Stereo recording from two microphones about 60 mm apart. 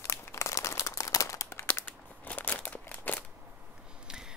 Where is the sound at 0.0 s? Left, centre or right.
Left.